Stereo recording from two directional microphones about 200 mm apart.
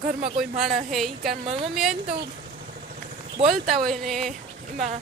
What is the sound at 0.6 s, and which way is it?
Speech, centre (ahead or behind).